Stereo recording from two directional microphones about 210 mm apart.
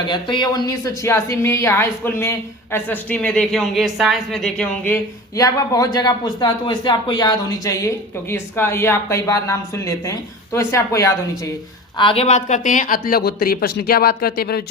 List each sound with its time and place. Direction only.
0.1 s a man's voice: 20° left (ahead or behind)
11.9 s speech: 25° left (ahead or behind); by 14.6 s 50° left (ahead or behind)